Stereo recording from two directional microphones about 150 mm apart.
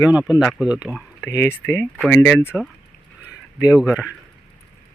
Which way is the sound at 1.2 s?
15° left (ahead or behind).